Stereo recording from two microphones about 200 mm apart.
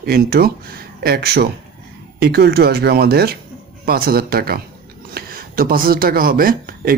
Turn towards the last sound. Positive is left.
turn(degrees=-45)  # may be behind; listen again after turning